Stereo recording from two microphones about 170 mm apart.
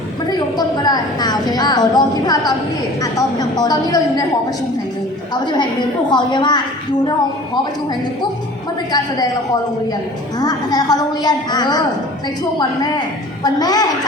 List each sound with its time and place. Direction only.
0.3 s a woman's voice: 25° left (ahead or behind)
5.3 s a woman's voice: 25° left (ahead or behind)
10.4 s a woman's voice: 25° left (ahead or behind)
13.4 s a woman's voice: 25° left (ahead or behind)